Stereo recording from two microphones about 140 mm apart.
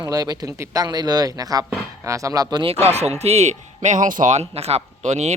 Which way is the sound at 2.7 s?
50° right (ahead or behind).